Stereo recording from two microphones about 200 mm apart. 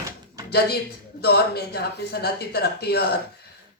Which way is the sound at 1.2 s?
55° left (ahead or behind).